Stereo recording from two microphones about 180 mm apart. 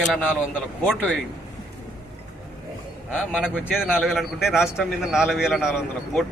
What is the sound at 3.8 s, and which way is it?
Speech, 5° right (ahead or behind).